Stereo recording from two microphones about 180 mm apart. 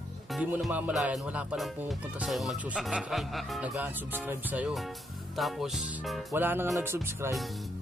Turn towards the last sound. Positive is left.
turn(degrees=-15)  # may be behind; listen again after turning